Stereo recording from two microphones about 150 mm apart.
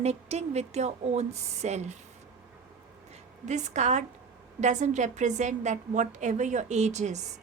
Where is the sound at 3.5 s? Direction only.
50° right (ahead or behind).